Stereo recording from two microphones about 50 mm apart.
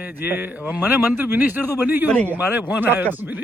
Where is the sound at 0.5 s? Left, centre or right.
Right.